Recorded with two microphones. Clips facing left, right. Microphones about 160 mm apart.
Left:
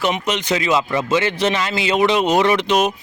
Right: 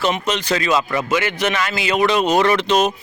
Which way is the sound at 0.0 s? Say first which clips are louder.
Even; 15° left (ahead or behind).